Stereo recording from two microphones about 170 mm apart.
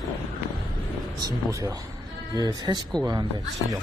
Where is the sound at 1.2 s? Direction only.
20° right (ahead or behind).